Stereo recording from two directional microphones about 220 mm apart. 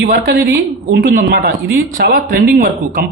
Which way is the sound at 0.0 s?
40° right (ahead or behind).